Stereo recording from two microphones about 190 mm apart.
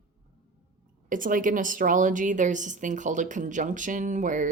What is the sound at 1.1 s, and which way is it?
Speech, 45° right (ahead or behind).